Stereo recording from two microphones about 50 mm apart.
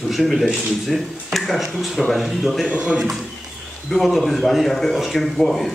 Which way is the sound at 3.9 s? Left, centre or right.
Centre.